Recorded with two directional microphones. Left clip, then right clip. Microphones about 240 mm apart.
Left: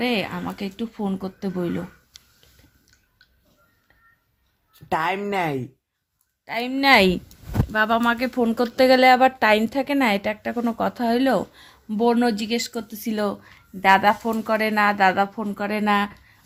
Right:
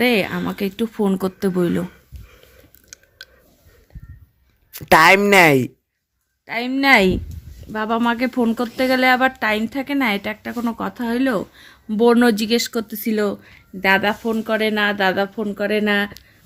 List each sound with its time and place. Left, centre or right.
0.0 s speech: right
4.7 s speech: right
6.4 s a woman's voice: centre
8.5 s speech: centre
11.9 s speech: centre
13.0 s a woman's voice: centre